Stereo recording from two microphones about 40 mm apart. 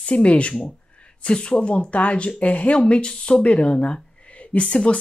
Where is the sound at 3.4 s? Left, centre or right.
Left.